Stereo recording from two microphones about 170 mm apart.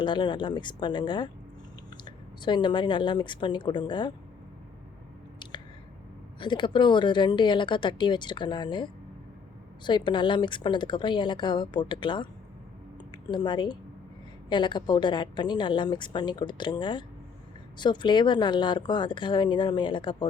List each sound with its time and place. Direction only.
0.0 s a woman's voice: 30° left (ahead or behind)
6.4 s a woman's voice: 25° left (ahead or behind)